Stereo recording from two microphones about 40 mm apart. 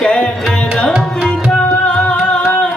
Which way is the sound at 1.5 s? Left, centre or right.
Left.